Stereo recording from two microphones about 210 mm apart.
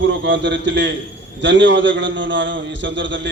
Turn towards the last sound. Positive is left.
turn(degrees=-60)  # may be behind; listen again after turning